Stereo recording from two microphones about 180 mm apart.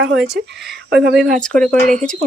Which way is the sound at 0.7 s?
65° right (ahead or behind).